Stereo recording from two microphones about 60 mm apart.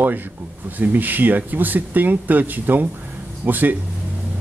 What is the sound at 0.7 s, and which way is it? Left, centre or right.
Speech, right.